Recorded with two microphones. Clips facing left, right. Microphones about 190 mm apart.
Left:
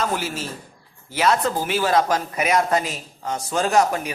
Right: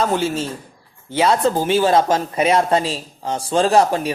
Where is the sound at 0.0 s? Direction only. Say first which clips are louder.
Right 6 dB; 25° right (ahead or behind).